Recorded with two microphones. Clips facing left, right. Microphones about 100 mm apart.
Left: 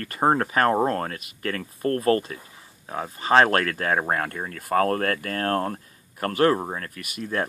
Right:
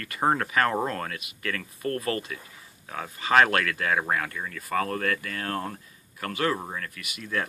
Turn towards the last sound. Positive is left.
turn(degrees=45)  # may be behind; listen again after turning